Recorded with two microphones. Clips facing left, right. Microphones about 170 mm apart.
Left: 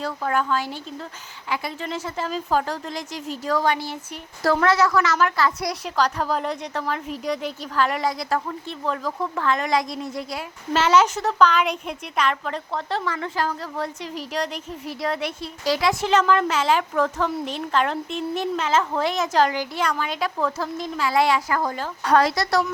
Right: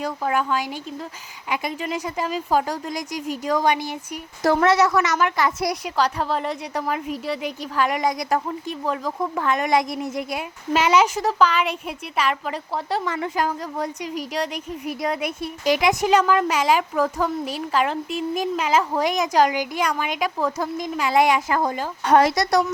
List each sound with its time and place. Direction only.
0.0 s speech: 10° right (ahead or behind)
5.8 s a woman's voice: 10° right (ahead or behind)